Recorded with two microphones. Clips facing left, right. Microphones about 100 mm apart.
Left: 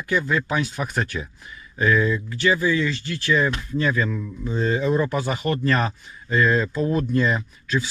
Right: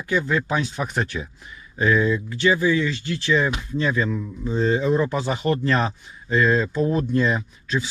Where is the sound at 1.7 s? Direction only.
20° right (ahead or behind); by 7.3 s centre (ahead or behind).